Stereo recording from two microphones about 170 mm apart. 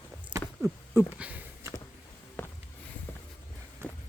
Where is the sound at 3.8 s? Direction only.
15° right (ahead or behind).